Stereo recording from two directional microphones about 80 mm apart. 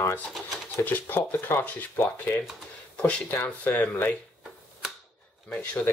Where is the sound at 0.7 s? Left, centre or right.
Left.